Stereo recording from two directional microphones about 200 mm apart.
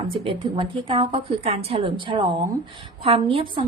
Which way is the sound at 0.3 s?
25° right (ahead or behind).